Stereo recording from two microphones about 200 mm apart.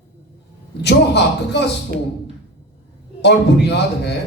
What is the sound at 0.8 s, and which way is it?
Speech, 55° left (ahead or behind).